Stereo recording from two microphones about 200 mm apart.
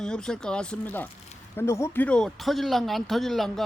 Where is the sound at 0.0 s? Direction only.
5° left (ahead or behind).